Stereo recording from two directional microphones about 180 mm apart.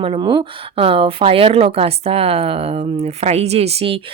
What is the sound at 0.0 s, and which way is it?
A woman's voice, 25° right (ahead or behind).